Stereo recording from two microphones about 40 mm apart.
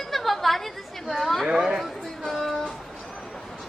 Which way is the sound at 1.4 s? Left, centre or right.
Centre.